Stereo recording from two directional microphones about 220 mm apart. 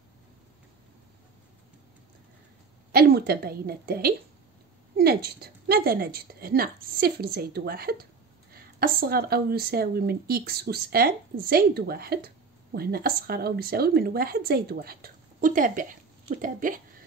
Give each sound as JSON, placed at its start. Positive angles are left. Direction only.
{"t": 2.9, "sound": "a woman's voice", "side_deg": -45}